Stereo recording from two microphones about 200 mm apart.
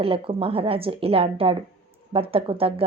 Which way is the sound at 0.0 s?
30° right (ahead or behind).